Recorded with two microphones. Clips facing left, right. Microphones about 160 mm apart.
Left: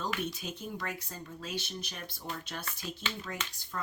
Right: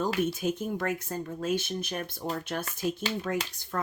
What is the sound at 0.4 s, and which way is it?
Speech, 50° right (ahead or behind).